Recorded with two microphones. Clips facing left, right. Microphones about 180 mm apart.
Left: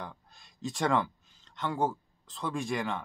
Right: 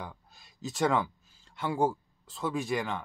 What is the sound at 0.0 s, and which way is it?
Speech, 5° right (ahead or behind).